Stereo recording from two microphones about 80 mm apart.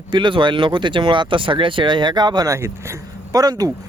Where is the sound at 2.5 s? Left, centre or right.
Right.